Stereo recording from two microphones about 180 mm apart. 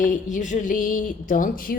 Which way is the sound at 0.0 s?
45° left (ahead or behind).